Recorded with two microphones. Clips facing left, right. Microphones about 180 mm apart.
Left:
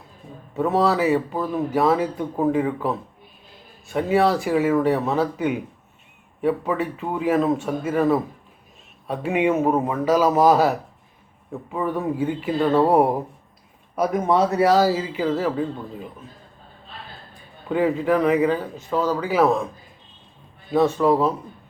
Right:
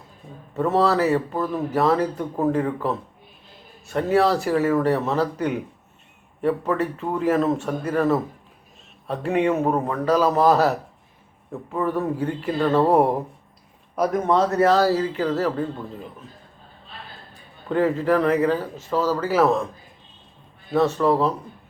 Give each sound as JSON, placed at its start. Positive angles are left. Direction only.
{"t": 0.5, "sound": "speech", "side_deg": 0}
{"t": 17.7, "sound": "speech", "side_deg": 0}
{"t": 20.7, "sound": "speech", "side_deg": 0}